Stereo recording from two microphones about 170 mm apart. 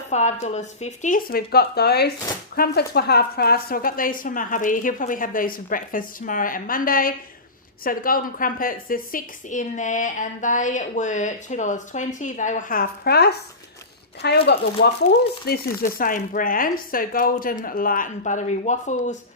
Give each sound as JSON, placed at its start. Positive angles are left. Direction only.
{"t": 0.1, "sound": "a woman's voice", "side_deg": 45}
{"t": 15.4, "sound": "a woman's voice", "side_deg": 65}